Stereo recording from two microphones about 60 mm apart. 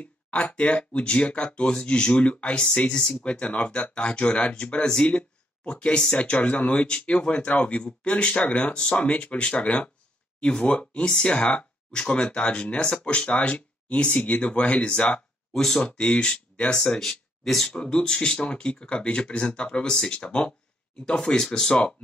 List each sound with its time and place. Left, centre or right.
0.0 s speech: left
16.8 s speech: centre